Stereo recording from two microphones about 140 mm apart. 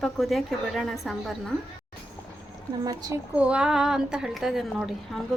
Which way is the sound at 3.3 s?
10° right (ahead or behind).